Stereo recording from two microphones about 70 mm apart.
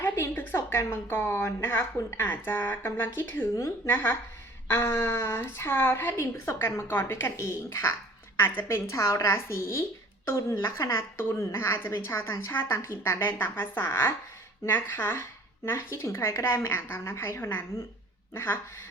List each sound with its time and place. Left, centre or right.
0.0 s a woman's voice: left
3.5 s a woman's voice: left
4.7 s a woman's voice: left